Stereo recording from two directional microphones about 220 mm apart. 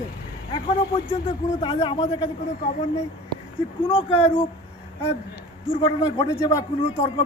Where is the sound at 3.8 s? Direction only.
25° left (ahead or behind).